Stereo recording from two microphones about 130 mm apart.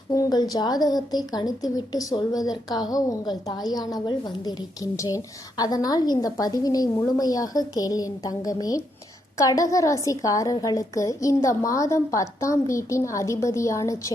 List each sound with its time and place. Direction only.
0.1 s a woman's voice: 30° left (ahead or behind)